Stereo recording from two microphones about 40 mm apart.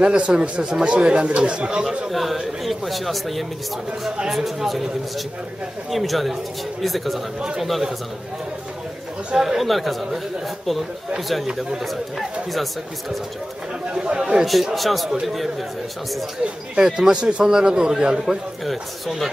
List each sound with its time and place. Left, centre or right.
0.0 s speech: right
2.0 s speech: centre
5.9 s speech: centre
9.3 s speech: centre
13.9 s speech: right
14.4 s speech: centre
16.8 s a man's voice: centre
18.7 s speech: centre